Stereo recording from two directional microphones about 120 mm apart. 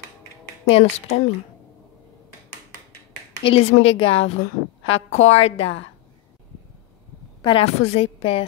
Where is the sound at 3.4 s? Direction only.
55° left (ahead or behind).